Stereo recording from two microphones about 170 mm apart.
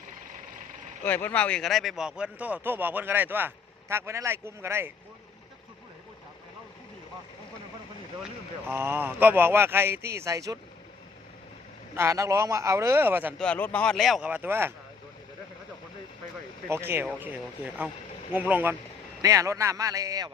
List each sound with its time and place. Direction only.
1.0 s speech: 10° left (ahead or behind); by 4.9 s 15° right (ahead or behind)
8.6 s speech: 15° right (ahead or behind)
11.9 s speech: 15° right (ahead or behind)
13.4 s speech: 10° left (ahead or behind); by 14.7 s 10° right (ahead or behind)
16.6 s a man's voice: 15° right (ahead or behind)